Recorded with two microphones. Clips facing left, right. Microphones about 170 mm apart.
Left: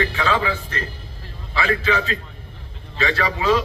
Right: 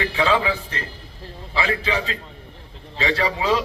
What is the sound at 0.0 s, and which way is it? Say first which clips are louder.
A man's voice: right 1 dB; 25° right (ahead or behind).